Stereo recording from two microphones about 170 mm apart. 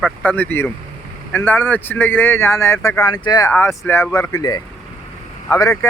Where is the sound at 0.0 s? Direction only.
10° left (ahead or behind).